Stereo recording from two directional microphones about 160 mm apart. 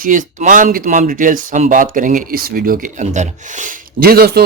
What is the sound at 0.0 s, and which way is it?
A man's voice, 55° right (ahead or behind).